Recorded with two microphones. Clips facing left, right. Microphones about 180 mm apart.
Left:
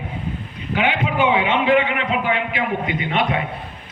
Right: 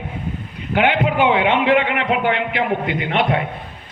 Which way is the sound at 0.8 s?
55° right (ahead or behind).